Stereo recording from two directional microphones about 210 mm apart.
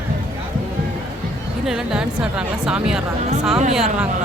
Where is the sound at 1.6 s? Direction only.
5° right (ahead or behind).